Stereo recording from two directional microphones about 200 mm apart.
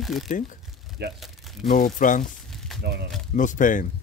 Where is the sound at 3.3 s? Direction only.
40° left (ahead or behind).